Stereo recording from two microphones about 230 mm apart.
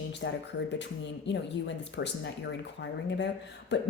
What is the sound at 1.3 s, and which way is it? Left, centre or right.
Speech, left.